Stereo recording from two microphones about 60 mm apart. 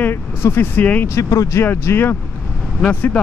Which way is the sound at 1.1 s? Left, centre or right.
Left.